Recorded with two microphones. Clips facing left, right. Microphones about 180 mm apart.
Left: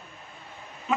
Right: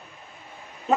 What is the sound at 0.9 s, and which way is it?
Pig, 35° right (ahead or behind).